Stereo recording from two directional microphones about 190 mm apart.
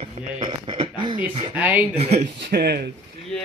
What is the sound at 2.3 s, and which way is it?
Speech, 60° right (ahead or behind).